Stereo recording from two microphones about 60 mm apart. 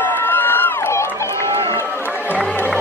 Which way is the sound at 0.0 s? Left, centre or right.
Left.